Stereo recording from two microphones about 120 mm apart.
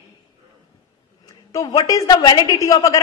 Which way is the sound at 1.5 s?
30° left (ahead or behind).